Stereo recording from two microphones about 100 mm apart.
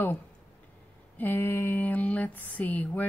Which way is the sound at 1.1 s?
20° left (ahead or behind).